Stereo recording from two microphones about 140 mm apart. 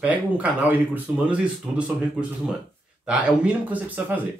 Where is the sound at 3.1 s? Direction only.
10° right (ahead or behind).